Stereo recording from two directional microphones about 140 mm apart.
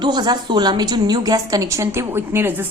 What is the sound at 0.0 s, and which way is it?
A woman's voice, 30° right (ahead or behind).